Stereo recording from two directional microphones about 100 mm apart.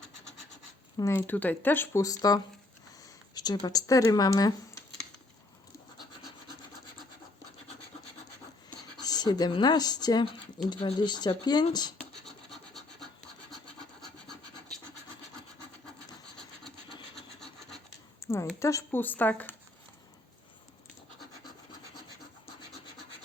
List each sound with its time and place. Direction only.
1.1 s speech: 20° left (ahead or behind)
2.0 s speech: 35° left (ahead or behind)
9.0 s speech: 45° left (ahead or behind)
10.7 s speech: 55° left (ahead or behind)
12.2 s rub: 5° left (ahead or behind)
14.0 s scratch: 5° left (ahead or behind)
17.2 s wood: 5° left (ahead or behind)
18.2 s a sound: 30° left (ahead or behind)
18.6 s speech: 30° left (ahead or behind)